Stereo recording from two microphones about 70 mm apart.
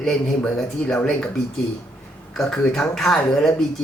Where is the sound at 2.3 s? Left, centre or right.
Centre.